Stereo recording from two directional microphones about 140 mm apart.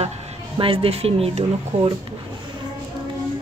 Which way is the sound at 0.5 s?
40° right (ahead or behind).